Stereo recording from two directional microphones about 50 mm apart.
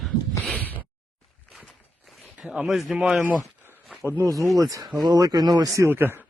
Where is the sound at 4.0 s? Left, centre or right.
Right.